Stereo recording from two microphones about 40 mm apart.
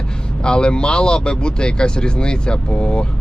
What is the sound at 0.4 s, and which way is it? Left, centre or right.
Speech, left.